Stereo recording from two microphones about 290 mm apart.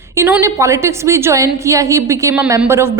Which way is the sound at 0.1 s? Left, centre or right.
Centre.